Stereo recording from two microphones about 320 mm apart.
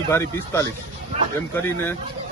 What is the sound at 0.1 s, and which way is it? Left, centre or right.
Speech, centre.